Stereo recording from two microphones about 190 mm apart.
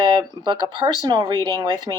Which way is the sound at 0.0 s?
20° right (ahead or behind).